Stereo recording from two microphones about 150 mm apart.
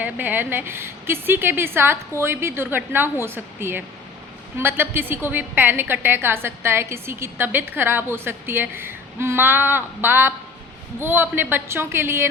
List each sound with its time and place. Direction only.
0.0 s a woman's voice: 10° right (ahead or behind)